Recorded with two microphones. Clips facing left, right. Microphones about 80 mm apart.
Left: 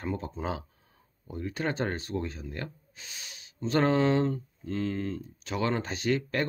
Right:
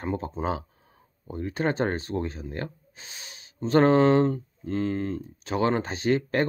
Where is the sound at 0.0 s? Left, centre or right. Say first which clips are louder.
Right 4 dB; right.